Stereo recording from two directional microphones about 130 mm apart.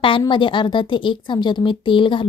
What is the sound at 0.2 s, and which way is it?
A woman's voice, 40° left (ahead or behind).